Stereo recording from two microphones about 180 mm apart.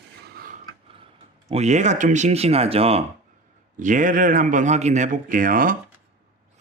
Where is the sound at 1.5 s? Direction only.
40° right (ahead or behind).